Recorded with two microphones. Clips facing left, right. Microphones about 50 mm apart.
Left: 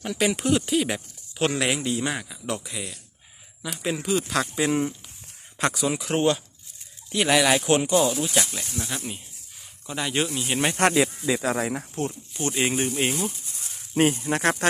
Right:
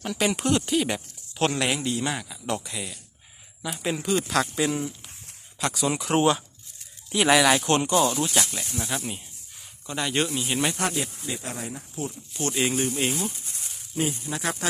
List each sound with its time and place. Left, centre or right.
0.0 s speech: centre
4.6 s speech: left
5.7 s speech: centre
10.8 s speech: left
12.3 s speech: centre
13.9 s speech: left